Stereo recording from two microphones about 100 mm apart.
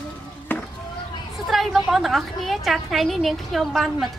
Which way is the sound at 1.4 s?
Centre (ahead or behind).